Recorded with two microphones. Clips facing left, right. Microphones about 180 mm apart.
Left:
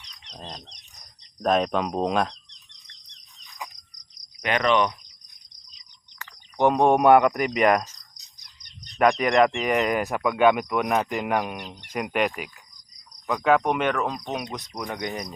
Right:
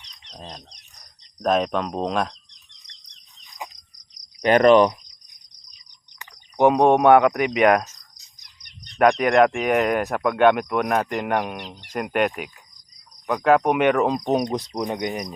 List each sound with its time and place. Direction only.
0.3 s speech: centre (ahead or behind)
4.4 s cricket: 40° right (ahead or behind)
6.6 s speech: 5° right (ahead or behind)
9.0 s speech: centre (ahead or behind); by 14.1 s 15° right (ahead or behind)
14.1 s cricket: 35° right (ahead or behind); by 15.3 s 15° right (ahead or behind)